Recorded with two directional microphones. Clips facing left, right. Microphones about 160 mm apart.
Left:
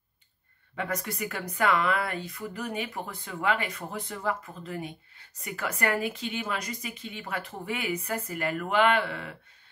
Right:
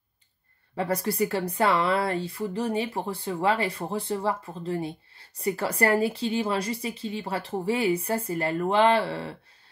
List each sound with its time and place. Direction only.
0.7 s speech: 35° right (ahead or behind)